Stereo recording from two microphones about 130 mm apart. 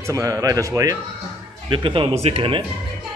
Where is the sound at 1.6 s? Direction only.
40° right (ahead or behind).